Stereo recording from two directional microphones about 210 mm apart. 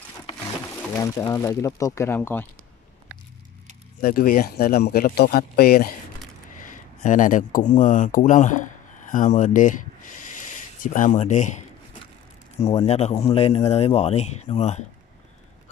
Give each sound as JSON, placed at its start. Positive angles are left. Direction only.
{"t": 0.8, "sound": "speech", "side_deg": 15}
{"t": 4.0, "sound": "speech", "side_deg": 45}
{"t": 7.0, "sound": "speech", "side_deg": 40}
{"t": 10.8, "sound": "a sound", "side_deg": 40}
{"t": 12.5, "sound": "a man's voice", "side_deg": 30}